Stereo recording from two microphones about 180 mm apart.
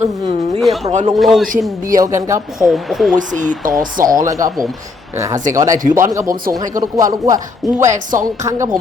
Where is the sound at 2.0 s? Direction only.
15° right (ahead or behind).